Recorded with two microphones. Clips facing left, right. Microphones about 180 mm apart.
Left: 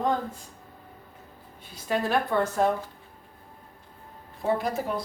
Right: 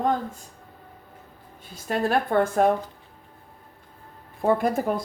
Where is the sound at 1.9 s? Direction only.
50° right (ahead or behind).